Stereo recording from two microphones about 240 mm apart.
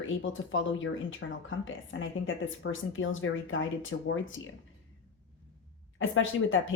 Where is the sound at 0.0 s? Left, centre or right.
Left.